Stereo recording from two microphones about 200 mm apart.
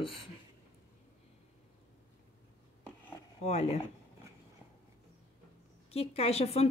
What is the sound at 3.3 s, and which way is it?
Speech, 30° left (ahead or behind).